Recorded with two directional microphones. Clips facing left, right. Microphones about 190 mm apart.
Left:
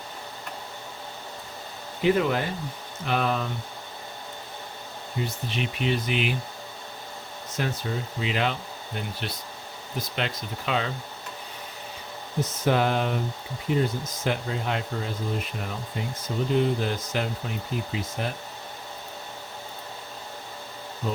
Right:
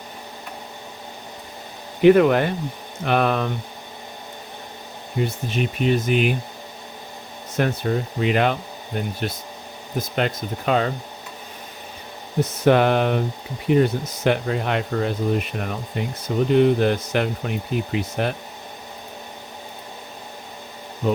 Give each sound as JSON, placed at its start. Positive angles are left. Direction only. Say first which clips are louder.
{"t": 2.0, "sound": "speech", "louder": "right 9 dB", "side_deg": -65}
{"t": 5.2, "sound": "speech", "louder": "right 7 dB", "side_deg": -50}
{"t": 7.5, "sound": "speech", "louder": "right 8 dB", "side_deg": -60}
{"t": 12.4, "sound": "speech", "louder": "right 7 dB", "side_deg": -65}